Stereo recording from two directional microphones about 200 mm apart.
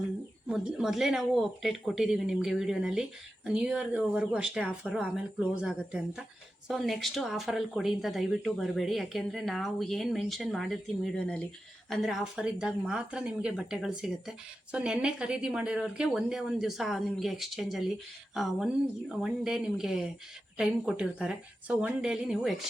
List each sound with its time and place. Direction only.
0.4 s speech: 5° right (ahead or behind)